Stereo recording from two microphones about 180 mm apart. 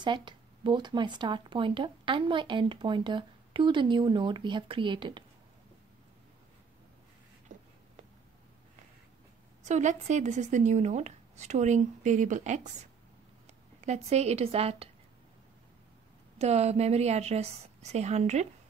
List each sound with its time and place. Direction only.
0.0 s speech: 25° right (ahead or behind)
7.5 s a sound: 45° right (ahead or behind)
9.6 s speech: 40° right (ahead or behind)
13.7 s speech: 40° right (ahead or behind)
16.3 s speech: 35° right (ahead or behind)